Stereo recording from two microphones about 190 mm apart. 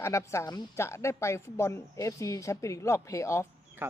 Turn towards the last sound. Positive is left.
turn(degrees=-10)  # may be behind; listen again after turning